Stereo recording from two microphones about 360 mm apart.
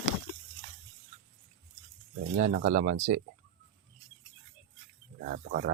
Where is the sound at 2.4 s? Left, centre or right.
Right.